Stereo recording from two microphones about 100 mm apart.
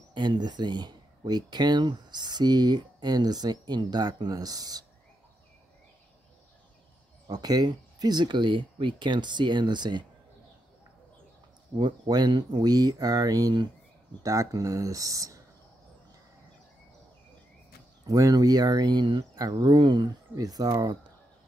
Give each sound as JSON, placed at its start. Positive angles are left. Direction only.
{"t": 0.1, "sound": "speech", "side_deg": -50}
{"t": 7.2, "sound": "speech", "side_deg": -40}
{"t": 11.7, "sound": "speech", "side_deg": -45}
{"t": 18.0, "sound": "speech", "side_deg": -35}